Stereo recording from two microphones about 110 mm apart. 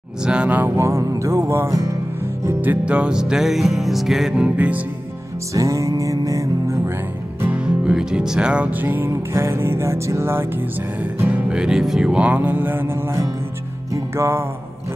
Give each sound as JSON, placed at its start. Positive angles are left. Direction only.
{"t": 0.2, "sound": "music", "side_deg": -10}
{"t": 2.4, "sound": "music", "side_deg": -15}
{"t": 5.5, "sound": "music", "side_deg": -30}
{"t": 7.4, "sound": "music", "side_deg": -10}
{"t": 11.1, "sound": "music", "side_deg": -15}